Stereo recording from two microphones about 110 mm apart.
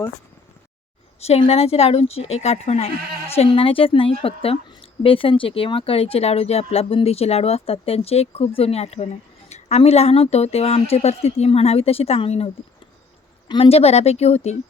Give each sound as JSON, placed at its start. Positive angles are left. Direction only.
{"t": 1.2, "sound": "speech", "side_deg": 70}
{"t": 13.5, "sound": "speech", "side_deg": 60}